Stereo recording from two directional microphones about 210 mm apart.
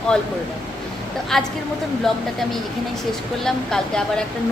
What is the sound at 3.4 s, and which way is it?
Speech, 5° left (ahead or behind).